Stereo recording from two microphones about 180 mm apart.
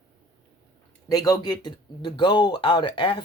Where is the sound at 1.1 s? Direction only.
20° left (ahead or behind).